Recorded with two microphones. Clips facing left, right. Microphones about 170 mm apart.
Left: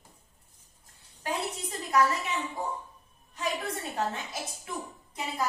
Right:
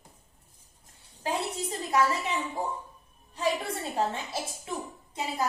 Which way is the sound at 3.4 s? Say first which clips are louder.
Right 3 dB; 30° right (ahead or behind).